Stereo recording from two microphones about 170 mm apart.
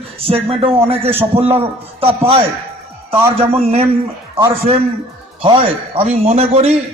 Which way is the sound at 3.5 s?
35° right (ahead or behind).